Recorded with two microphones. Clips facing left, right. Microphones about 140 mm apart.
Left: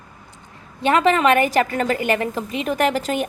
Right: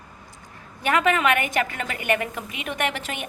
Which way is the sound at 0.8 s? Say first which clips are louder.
Left 5 dB; 30° left (ahead or behind).